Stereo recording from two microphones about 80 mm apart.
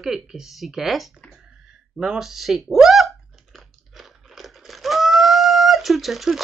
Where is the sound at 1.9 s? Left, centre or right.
Centre.